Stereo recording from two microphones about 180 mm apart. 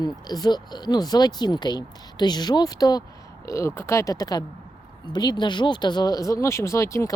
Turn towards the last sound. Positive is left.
turn(degrees=15)  # may be behind; listen again after turning